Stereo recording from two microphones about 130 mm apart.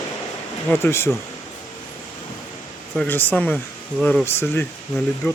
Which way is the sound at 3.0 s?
15° left (ahead or behind).